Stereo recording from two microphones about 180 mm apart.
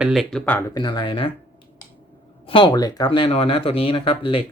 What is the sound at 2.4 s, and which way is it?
Speech, 25° left (ahead or behind).